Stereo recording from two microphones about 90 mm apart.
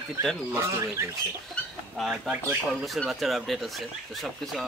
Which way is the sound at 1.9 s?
5° right (ahead or behind).